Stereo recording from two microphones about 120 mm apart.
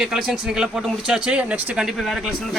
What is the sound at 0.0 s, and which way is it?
Speech, 5° right (ahead or behind).